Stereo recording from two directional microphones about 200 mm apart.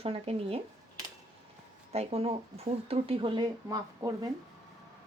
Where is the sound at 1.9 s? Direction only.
30° right (ahead or behind).